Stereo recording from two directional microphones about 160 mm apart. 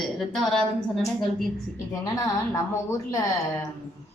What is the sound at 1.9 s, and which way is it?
Speech, 20° left (ahead or behind).